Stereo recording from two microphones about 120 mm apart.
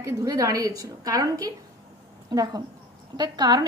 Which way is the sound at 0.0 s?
30° right (ahead or behind).